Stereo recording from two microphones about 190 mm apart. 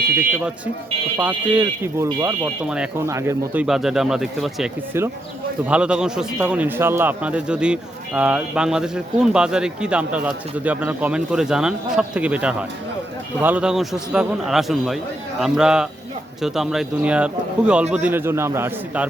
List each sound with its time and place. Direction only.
1.2 s a man's voice: 10° right (ahead or behind)
2.6 s a man's voice: 5° right (ahead or behind)